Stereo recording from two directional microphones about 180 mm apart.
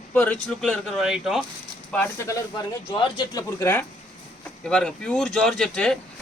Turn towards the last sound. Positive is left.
turn(degrees=5)  # may be behind; listen again after turning